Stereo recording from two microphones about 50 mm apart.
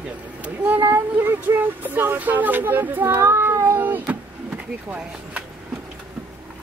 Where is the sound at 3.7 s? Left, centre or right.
Right.